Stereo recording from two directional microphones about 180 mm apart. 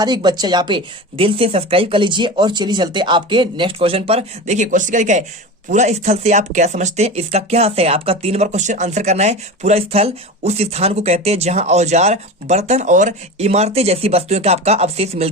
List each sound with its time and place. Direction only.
0.0 s speech: 25° right (ahead or behind)